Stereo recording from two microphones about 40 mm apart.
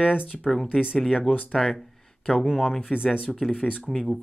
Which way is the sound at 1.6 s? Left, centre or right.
Centre.